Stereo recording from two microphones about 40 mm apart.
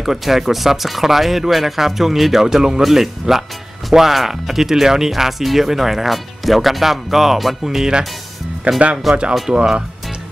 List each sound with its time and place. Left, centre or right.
0.0 s speech: centre
2.4 s speech: centre
8.7 s speech: right
9.1 s speech: centre
9.5 s speech: right